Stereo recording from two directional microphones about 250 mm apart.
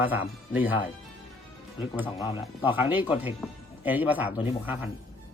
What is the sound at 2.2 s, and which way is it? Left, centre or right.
Speech, left.